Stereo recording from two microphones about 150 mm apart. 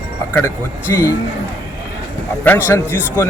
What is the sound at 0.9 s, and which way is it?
Speech, 20° left (ahead or behind).